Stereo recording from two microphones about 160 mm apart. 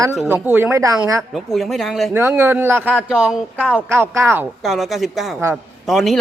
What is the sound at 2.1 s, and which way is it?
A man's voice, 15° right (ahead or behind).